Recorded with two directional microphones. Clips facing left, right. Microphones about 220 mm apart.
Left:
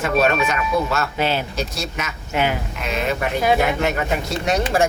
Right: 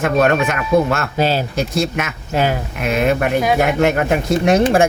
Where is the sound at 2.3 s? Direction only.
40° right (ahead or behind).